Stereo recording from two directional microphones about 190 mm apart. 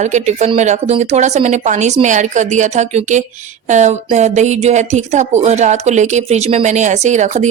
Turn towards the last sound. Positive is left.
turn(degrees=-40)  # may be behind; listen again after turning